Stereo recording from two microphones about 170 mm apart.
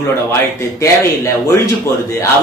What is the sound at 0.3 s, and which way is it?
A woman's voice, 15° left (ahead or behind).